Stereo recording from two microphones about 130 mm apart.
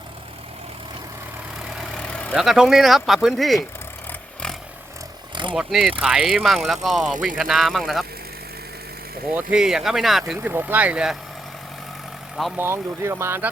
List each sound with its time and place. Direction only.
1.7 s vehicle: centre (ahead or behind)
2.0 s vehicle: 10° left (ahead or behind)
2.3 s speech: 5° right (ahead or behind)
5.3 s a sound: 40° right (ahead or behind)
5.5 s speech: centre (ahead or behind)
9.3 s speech: 5° right (ahead or behind)
12.5 s speech: 20° right (ahead or behind)